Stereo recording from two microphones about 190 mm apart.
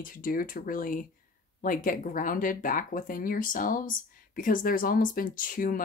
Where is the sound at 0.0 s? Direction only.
45° left (ahead or behind).